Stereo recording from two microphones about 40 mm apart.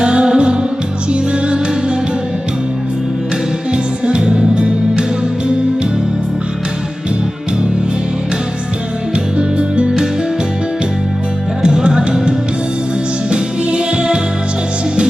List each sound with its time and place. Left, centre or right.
0.0 s music: right
3.7 s music: right
9.1 s music: right
11.6 s music: right
13.3 s music: right